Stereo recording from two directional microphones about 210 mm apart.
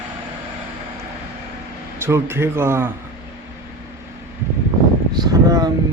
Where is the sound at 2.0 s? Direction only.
10° right (ahead or behind).